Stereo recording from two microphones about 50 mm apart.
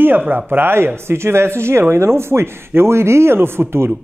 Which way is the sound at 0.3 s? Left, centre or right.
Right.